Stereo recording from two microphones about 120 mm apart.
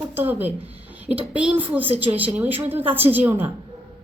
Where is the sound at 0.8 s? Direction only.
15° right (ahead or behind).